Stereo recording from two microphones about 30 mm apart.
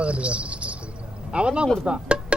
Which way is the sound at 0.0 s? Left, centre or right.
Right.